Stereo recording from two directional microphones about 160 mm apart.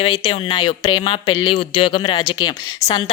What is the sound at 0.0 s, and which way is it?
Speech, 35° left (ahead or behind).